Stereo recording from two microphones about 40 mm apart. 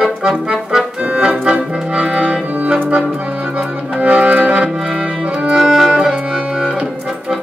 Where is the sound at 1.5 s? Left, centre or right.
Centre.